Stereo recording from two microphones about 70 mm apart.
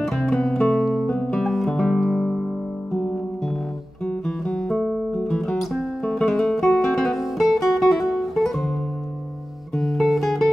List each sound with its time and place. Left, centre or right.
0.0 s guitar: centre
1.0 s music: centre
1.3 s music: centre
4.5 s music: centre
9.8 s music: centre